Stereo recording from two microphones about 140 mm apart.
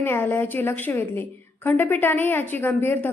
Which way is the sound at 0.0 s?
15° left (ahead or behind).